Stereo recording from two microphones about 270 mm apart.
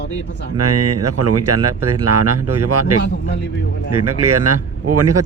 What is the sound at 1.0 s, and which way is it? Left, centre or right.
Speech, right.